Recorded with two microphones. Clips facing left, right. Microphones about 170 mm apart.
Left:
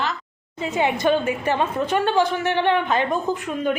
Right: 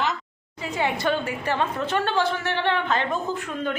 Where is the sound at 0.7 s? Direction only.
20° left (ahead or behind).